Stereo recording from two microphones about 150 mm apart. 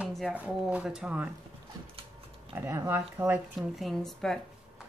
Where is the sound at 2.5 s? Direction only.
20° right (ahead or behind).